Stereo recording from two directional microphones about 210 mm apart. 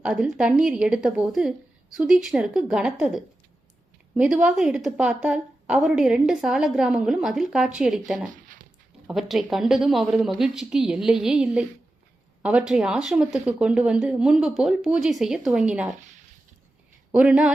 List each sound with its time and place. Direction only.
0.0 s a woman's voice: 5° right (ahead or behind)
8.3 s a sound: 40° right (ahead or behind)
9.0 s a woman's voice: centre (ahead or behind)
17.2 s a woman's voice: 5° right (ahead or behind)